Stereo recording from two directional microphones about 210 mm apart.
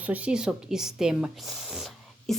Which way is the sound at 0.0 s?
5° right (ahead or behind).